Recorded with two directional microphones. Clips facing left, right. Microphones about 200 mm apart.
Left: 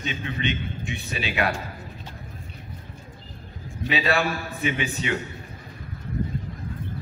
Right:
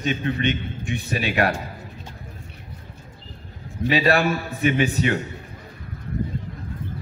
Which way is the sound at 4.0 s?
45° right (ahead or behind).